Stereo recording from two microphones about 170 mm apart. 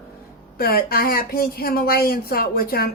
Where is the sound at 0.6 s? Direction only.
60° left (ahead or behind).